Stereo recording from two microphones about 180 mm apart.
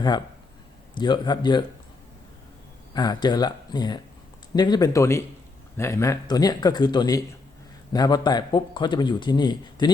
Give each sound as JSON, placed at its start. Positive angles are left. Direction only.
{"t": 0.9, "sound": "speech", "side_deg": 25}
{"t": 2.9, "sound": "speech", "side_deg": 20}